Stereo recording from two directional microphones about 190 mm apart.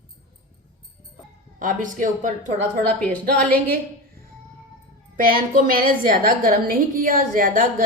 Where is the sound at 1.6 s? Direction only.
45° right (ahead or behind).